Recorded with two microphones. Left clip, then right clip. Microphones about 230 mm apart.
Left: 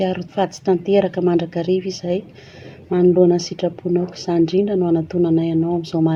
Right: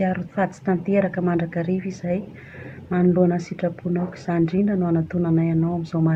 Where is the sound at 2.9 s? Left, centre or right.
Left.